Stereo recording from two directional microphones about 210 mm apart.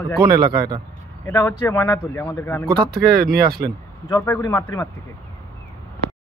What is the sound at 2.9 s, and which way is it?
Speech, 45° right (ahead or behind).